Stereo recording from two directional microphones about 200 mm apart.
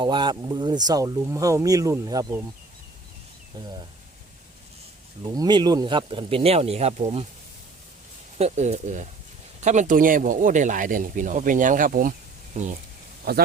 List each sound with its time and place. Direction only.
0.0 s speech: 25° right (ahead or behind)
5.3 s speech: 20° right (ahead or behind)
8.4 s speech: 35° right (ahead or behind)
13.3 s speech: 50° right (ahead or behind)